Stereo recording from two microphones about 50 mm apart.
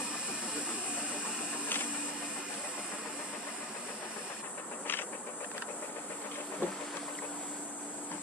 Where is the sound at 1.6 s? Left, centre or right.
Left.